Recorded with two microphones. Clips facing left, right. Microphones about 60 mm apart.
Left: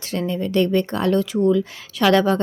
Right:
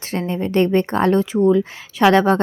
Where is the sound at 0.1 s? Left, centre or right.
Right.